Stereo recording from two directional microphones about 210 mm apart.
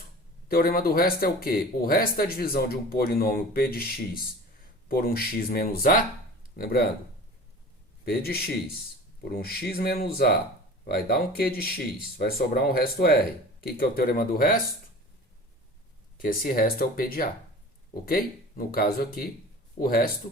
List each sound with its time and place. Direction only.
0.4 s speech: 45° left (ahead or behind)
8.0 s speech: 45° left (ahead or behind)
16.2 s speech: 45° left (ahead or behind)